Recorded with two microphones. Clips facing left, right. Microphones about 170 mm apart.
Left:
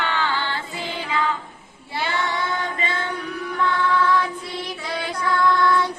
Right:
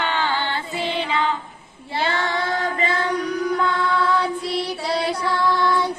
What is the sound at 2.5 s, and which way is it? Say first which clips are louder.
Music: right 4 dB; 40° right (ahead or behind).